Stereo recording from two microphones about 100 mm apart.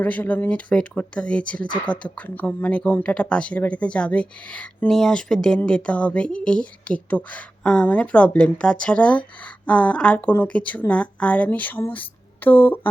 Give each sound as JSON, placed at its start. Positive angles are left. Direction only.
{"t": 0.0, "sound": "a woman's voice", "side_deg": 15}